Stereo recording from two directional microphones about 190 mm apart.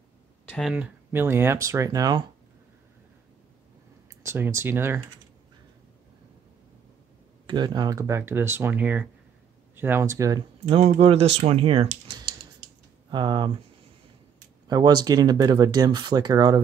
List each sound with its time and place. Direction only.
0.5 s speech: centre (ahead or behind); by 2.2 s 20° right (ahead or behind)
4.2 s speech: 15° right (ahead or behind)
7.4 s speech: 25° right (ahead or behind)
10.7 s speech: 30° right (ahead or behind)
14.7 s speech: 20° right (ahead or behind)